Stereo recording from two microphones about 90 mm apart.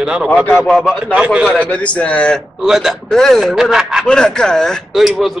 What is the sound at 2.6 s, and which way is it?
Speech, 5° right (ahead or behind).